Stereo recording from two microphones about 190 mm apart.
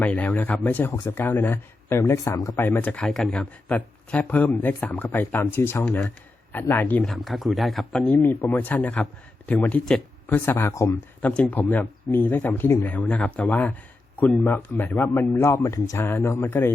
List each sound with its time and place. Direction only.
0.0 s speech: 10° left (ahead or behind)